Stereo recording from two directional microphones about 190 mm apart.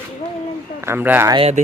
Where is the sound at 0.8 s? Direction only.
10° right (ahead or behind).